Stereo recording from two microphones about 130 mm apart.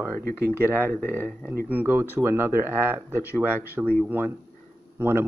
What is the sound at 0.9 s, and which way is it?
Speech, 15° left (ahead or behind).